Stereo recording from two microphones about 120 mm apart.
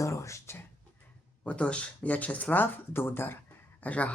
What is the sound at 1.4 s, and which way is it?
Speech, 10° left (ahead or behind).